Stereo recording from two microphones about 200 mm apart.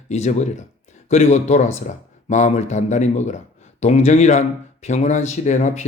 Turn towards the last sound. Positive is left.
turn(degrees=35)  # may be behind; listen again after turning